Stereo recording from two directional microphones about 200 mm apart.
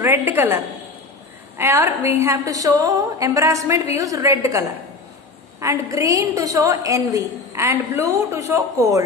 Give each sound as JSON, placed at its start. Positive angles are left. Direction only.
{"t": 0.0, "sound": "a woman's voice", "side_deg": -10}
{"t": 1.6, "sound": "a woman's voice", "side_deg": -10}